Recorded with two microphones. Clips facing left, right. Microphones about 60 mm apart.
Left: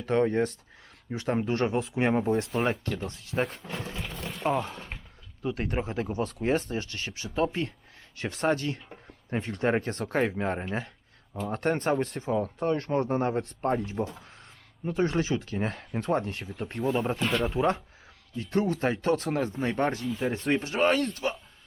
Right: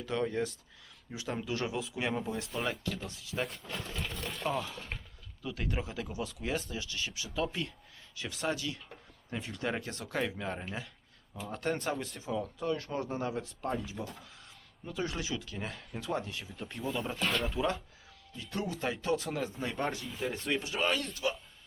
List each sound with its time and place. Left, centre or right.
0.0 s speech: left
2.4 s speech: left
3.9 s a sound: centre
4.4 s speech: left
17.2 s speech: centre
17.5 s speech: left
20.1 s speech: centre
20.5 s speech: left